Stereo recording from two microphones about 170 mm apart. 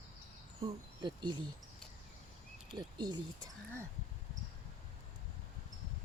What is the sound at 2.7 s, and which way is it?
Speech, 25° right (ahead or behind).